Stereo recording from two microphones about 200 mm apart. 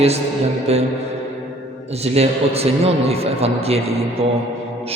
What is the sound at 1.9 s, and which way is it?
A man's voice, 30° right (ahead or behind).